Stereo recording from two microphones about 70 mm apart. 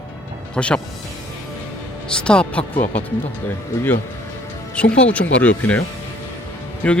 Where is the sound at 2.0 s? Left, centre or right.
Centre.